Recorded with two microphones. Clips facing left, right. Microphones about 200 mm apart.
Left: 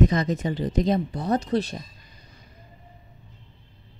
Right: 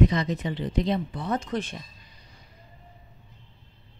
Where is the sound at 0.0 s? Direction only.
45° left (ahead or behind).